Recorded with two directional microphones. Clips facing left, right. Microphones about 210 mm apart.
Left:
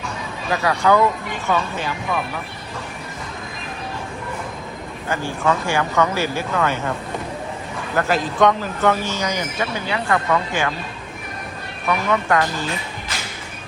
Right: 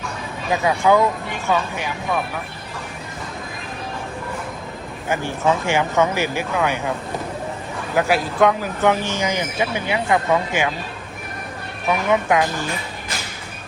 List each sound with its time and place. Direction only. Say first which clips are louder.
0.5 s speech: right 1 dB; 20° right (ahead or behind)
5.0 s speech: right 1 dB; 20° right (ahead or behind)
7.9 s speech: right 1 dB; 10° right (ahead or behind)
8.8 s speech: right 1 dB; 20° right (ahead or behind)
11.9 s speech: right 1 dB; 20° right (ahead or behind)